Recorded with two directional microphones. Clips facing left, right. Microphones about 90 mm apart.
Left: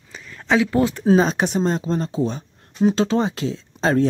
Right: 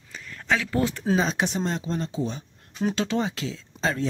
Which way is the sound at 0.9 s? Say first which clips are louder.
Left 8 dB; 30° left (ahead or behind).